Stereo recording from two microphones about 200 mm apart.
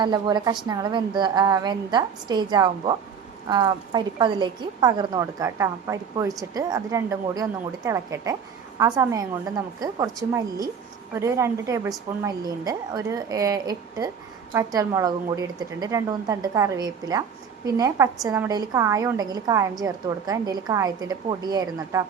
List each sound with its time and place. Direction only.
0.0 s a woman's voice: 20° right (ahead or behind)